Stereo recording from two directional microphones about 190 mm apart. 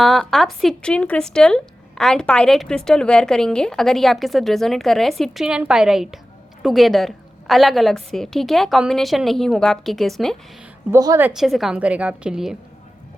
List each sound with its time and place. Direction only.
0.0 s speech: centre (ahead or behind)
10.9 s a woman's voice: 15° right (ahead or behind)
11.3 s speech: centre (ahead or behind)